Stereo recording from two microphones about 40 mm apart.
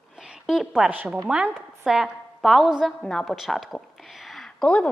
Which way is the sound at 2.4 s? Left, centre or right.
Centre.